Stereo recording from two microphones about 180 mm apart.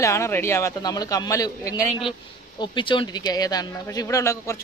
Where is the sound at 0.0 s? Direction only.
15° left (ahead or behind).